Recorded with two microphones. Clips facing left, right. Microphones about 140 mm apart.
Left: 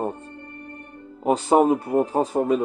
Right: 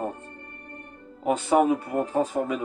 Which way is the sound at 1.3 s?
35° left (ahead or behind).